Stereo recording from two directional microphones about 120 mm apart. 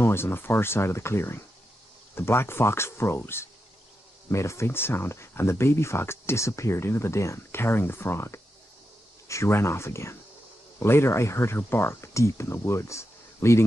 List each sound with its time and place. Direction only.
0.0 s speech: 20° left (ahead or behind)